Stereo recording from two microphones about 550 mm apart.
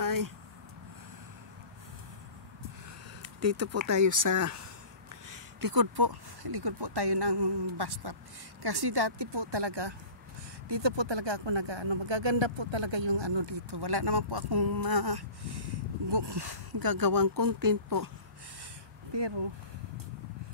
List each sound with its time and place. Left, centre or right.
0.0 s a sound: right
3.2 s speech: right
19.1 s speech: right